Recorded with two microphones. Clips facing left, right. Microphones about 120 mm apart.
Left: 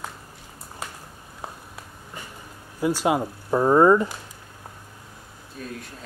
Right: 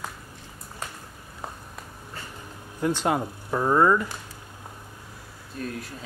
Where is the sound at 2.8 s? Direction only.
10° left (ahead or behind).